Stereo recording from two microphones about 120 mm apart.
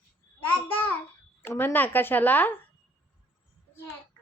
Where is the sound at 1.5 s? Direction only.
15° left (ahead or behind).